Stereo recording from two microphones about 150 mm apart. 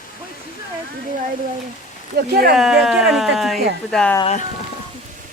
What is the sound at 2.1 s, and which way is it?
Speech, 90° right.